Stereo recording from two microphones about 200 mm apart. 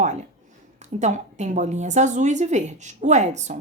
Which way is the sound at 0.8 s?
35° right (ahead or behind).